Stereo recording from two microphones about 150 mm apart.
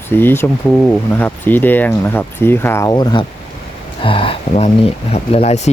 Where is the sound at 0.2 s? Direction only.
15° left (ahead or behind).